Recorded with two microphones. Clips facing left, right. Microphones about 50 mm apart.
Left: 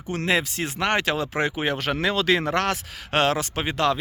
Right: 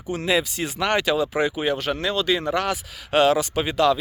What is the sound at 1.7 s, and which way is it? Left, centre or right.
Speech, left.